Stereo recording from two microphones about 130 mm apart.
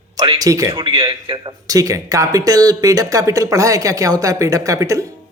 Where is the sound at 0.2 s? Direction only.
30° right (ahead or behind).